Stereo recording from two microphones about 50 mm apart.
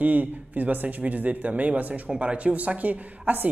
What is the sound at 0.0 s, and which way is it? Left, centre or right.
A man's voice, right.